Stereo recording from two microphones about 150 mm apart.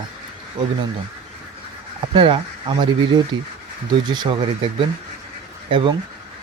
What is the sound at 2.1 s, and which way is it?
Speech, 35° right (ahead or behind).